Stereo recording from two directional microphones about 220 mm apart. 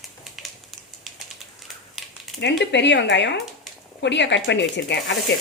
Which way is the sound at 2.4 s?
55° left (ahead or behind).